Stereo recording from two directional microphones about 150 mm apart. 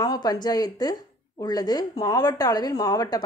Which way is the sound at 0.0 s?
25° left (ahead or behind).